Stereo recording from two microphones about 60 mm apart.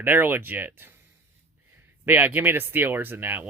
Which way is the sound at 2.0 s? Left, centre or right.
Right.